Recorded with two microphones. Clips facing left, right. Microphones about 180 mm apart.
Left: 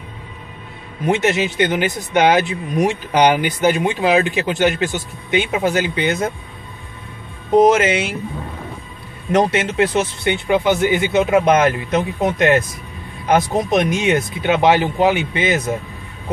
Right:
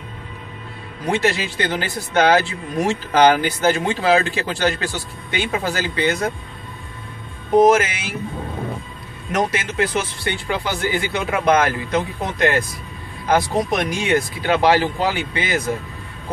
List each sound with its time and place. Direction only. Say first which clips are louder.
1.0 s speech: left 3 dB; 20° left (ahead or behind)
7.5 s speech: left 2 dB; 25° left (ahead or behind)
9.3 s speech: left 5 dB; 25° left (ahead or behind)